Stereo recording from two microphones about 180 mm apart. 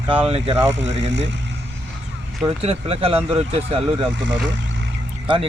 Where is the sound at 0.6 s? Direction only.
90° right.